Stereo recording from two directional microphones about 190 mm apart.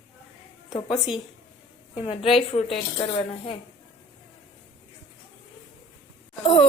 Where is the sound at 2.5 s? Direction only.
30° left (ahead or behind).